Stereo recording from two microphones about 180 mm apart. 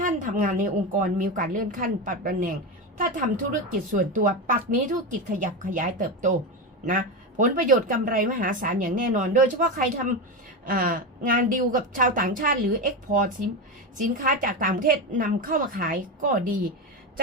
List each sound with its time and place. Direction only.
0.0 s a woman's voice: 45° right (ahead or behind)